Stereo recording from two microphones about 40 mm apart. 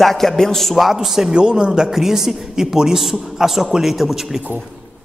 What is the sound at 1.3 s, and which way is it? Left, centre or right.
Speech, right.